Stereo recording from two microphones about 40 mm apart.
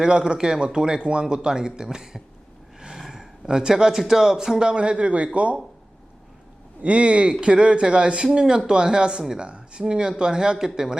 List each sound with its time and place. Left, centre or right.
0.0 s a man's voice: right
6.8 s a man's voice: right